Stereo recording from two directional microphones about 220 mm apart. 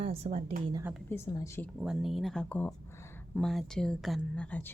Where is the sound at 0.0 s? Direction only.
25° right (ahead or behind).